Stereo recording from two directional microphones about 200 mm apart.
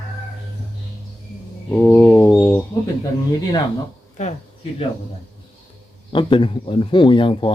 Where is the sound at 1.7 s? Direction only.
10° left (ahead or behind).